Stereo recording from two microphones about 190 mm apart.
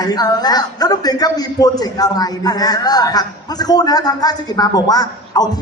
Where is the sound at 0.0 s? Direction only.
20° left (ahead or behind).